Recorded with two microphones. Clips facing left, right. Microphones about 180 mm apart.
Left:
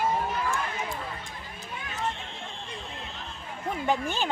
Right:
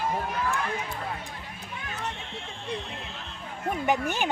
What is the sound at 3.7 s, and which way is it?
Speech, 15° right (ahead or behind).